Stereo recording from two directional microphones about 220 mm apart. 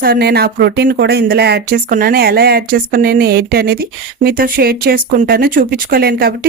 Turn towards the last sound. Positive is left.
turn(degrees=-45)  # may be behind; listen again after turning